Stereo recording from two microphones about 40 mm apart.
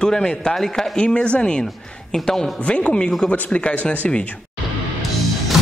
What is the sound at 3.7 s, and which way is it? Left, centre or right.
Speech, left.